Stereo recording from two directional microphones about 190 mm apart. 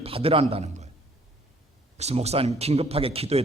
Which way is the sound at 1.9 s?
35° right (ahead or behind).